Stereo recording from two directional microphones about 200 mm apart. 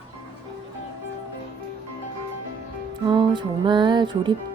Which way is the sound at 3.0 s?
25° right (ahead or behind).